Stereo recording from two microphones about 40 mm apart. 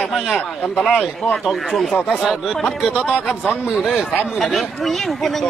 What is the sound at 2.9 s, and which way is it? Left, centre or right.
Speech, right.